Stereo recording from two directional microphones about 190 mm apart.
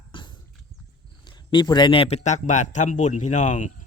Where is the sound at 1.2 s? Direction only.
25° left (ahead or behind); by 3.7 s 40° left (ahead or behind).